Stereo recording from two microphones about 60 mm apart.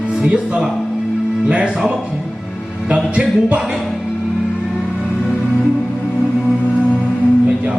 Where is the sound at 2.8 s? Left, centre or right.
Centre.